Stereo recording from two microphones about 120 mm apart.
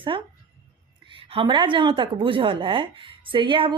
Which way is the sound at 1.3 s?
45° right (ahead or behind).